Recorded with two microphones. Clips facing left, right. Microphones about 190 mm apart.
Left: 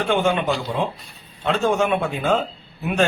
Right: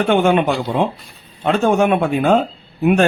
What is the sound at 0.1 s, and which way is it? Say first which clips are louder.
Speech: right 5 dB; 60° right (ahead or behind).